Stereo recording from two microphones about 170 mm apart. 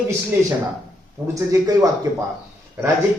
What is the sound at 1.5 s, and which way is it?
Speech, 20° right (ahead or behind).